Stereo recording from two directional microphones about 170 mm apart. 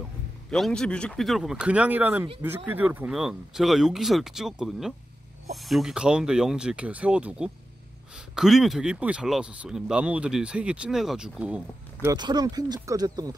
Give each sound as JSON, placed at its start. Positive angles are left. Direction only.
{"t": 0.5, "sound": "speech", "side_deg": 5}
{"t": 12.1, "sound": "speech", "side_deg": -25}